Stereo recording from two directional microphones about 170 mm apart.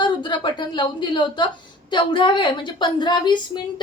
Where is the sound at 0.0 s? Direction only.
30° left (ahead or behind).